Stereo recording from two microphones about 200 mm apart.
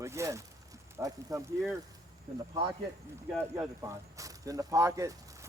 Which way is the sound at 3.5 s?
15° right (ahead or behind).